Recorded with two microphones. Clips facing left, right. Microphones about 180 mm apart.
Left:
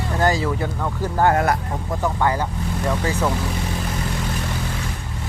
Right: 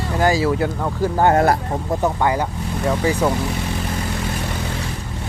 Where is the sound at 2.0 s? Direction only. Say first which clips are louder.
Right 1 dB; 15° right (ahead or behind).